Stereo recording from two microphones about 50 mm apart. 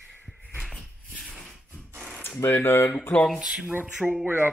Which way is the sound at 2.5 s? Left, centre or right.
Left.